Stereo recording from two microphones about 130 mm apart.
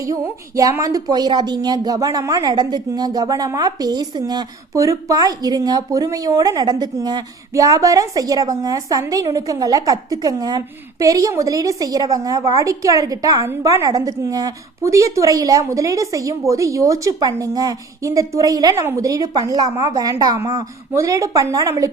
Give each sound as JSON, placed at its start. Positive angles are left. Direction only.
{"t": 0.0, "sound": "a woman's voice", "side_deg": -25}